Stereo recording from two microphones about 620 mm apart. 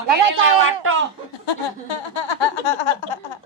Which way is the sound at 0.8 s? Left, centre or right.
Centre.